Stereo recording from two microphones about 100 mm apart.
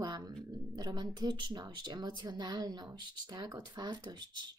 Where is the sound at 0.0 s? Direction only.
40° right (ahead or behind).